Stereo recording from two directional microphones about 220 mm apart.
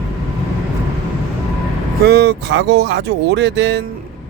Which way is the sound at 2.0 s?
50° right (ahead or behind).